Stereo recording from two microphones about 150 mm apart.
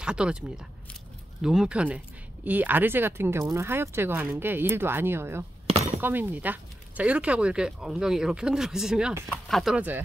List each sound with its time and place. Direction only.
0.0 s speech: 5° right (ahead or behind)
5.7 s a sound: 45° right (ahead or behind)
5.9 s speech: 15° right (ahead or behind)